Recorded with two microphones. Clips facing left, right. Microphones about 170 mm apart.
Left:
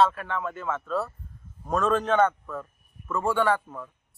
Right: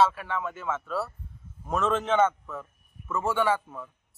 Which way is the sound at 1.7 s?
25° right (ahead or behind).